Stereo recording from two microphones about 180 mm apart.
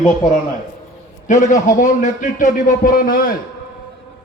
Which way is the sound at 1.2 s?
45° left (ahead or behind).